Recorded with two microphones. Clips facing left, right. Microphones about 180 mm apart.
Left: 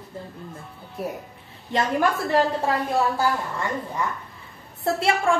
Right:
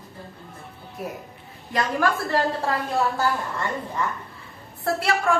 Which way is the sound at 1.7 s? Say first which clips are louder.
Left 1 dB; 20° left (ahead or behind).